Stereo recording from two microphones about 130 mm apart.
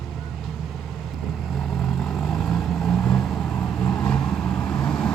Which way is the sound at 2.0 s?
5° left (ahead or behind).